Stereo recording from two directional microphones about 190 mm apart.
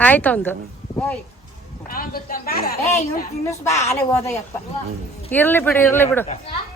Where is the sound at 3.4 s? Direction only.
15° left (ahead or behind).